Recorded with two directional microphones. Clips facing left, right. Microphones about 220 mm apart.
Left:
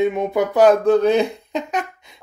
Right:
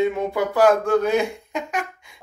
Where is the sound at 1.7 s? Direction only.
20° left (ahead or behind).